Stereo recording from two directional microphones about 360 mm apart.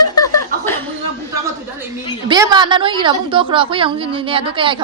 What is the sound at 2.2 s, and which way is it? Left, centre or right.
A woman's voice, centre.